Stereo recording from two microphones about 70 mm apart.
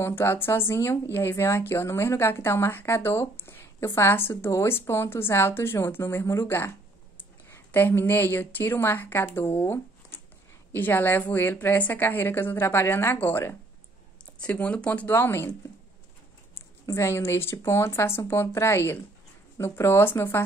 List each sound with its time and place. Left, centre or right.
0.0 s a woman's voice: left
14.4 s a woman's voice: centre
15.0 s speech: left
16.8 s speech: left